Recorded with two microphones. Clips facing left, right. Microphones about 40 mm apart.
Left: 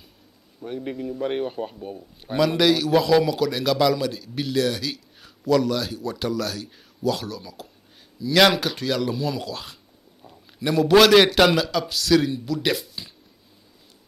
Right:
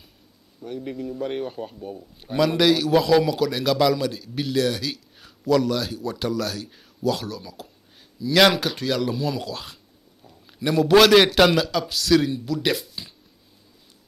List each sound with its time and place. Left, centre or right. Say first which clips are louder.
0.6 s speech: left 1 dB; centre
2.3 s a man's voice: even; centre